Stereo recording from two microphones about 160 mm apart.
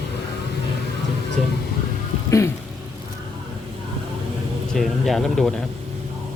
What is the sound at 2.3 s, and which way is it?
Music, 20° left (ahead or behind).